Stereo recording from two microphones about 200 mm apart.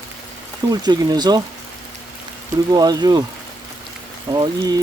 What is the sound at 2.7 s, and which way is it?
Speech, 20° right (ahead or behind).